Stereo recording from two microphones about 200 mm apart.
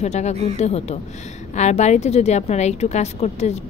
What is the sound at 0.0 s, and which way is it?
A woman's voice, 35° left (ahead or behind).